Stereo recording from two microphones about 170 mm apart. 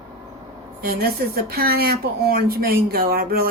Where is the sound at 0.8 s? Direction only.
65° right (ahead or behind).